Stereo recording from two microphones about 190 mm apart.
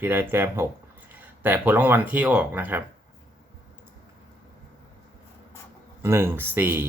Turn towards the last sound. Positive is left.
turn(degrees=-10)  # may be behind; listen again after turning